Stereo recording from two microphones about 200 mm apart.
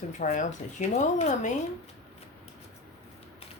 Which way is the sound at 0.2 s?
35° left (ahead or behind).